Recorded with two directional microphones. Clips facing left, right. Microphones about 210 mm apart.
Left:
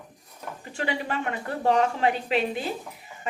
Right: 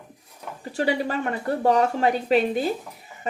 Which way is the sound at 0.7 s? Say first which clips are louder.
Right 6 dB; 35° right (ahead or behind).